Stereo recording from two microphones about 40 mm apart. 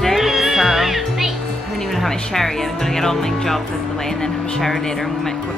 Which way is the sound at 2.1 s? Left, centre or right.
Centre.